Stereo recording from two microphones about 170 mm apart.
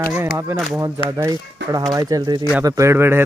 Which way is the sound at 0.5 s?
Centre (ahead or behind).